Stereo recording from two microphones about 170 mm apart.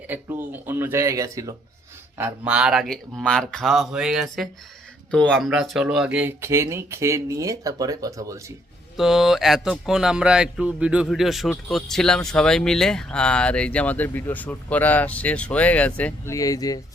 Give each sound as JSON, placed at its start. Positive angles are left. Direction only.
{"t": 0.1, "sound": "speech", "side_deg": -10}
{"t": 9.0, "sound": "speech", "side_deg": 0}